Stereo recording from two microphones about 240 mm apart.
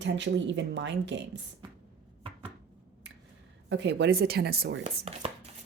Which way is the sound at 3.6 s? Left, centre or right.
Right.